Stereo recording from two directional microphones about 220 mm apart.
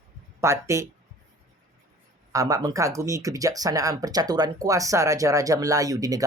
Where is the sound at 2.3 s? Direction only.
15° right (ahead or behind).